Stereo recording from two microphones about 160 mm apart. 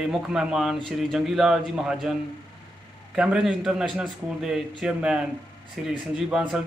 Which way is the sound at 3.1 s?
5° right (ahead or behind).